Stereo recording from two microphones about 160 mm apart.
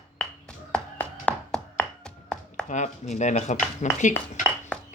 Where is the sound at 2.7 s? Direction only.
50° left (ahead or behind).